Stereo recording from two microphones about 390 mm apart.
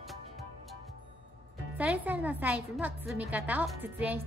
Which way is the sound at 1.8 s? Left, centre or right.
Centre.